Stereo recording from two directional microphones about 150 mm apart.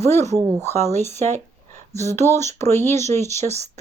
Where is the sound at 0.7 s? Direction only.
50° right (ahead or behind).